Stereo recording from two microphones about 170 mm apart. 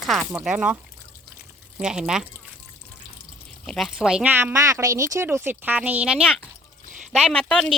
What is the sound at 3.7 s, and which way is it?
Speech, centre (ahead or behind).